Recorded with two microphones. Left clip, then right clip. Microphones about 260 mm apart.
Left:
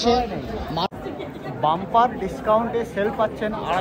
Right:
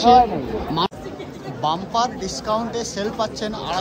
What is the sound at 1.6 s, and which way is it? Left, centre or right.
Speech, centre.